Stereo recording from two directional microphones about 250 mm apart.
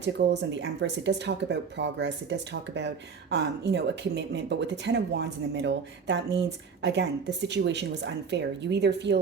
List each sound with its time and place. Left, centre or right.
0.0 s speech: right